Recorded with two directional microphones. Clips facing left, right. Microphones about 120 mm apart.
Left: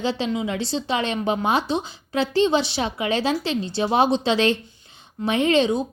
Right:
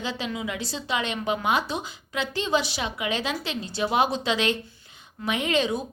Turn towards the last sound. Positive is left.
turn(degrees=25)  # may be behind; listen again after turning